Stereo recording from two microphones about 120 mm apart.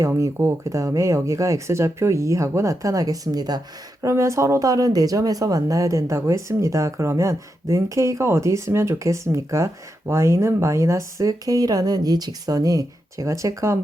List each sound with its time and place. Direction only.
0.0 s speech: 25° right (ahead or behind)